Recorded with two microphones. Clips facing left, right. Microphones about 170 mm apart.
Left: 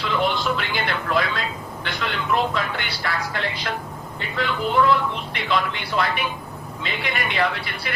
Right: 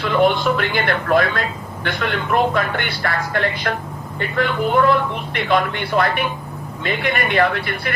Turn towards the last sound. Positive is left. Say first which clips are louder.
# right 5 dB
turn(degrees=-55)  # may be behind; listen again after turning